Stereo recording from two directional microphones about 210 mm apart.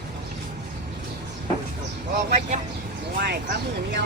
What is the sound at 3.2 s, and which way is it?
Speech, 55° right (ahead or behind).